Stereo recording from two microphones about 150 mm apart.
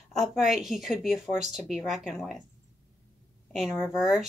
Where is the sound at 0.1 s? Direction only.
Centre (ahead or behind).